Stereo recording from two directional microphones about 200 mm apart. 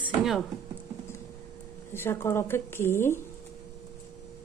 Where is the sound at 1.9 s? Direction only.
10° left (ahead or behind).